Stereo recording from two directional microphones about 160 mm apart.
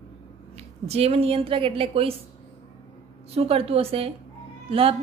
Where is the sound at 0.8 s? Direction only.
40° right (ahead or behind).